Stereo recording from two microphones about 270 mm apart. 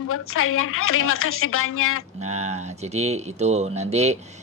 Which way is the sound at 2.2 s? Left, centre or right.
Right.